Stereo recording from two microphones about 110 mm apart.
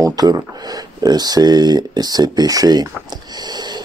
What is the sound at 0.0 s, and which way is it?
Speech, 35° right (ahead or behind).